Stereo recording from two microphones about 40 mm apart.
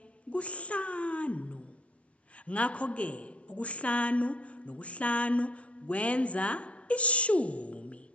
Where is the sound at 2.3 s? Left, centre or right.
Left.